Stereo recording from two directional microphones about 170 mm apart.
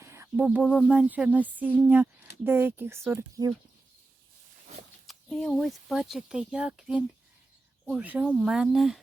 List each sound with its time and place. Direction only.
0.0 s a sound: 15° right (ahead or behind)
0.9 s speech: 10° right (ahead or behind)
5.0 s speech: centre (ahead or behind)